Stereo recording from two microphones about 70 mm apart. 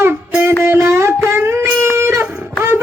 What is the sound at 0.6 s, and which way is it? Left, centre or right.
Music, right.